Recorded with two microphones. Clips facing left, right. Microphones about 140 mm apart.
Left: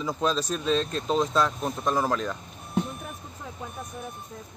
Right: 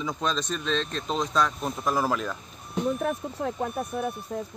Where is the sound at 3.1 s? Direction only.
80° right.